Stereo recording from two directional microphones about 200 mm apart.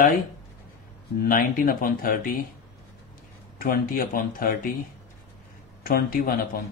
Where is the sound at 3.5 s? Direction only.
45° left (ahead or behind).